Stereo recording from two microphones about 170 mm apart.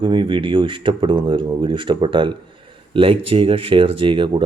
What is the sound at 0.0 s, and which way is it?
Speech, 30° right (ahead or behind).